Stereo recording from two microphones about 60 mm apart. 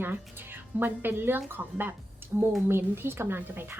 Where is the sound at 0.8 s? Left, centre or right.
Right.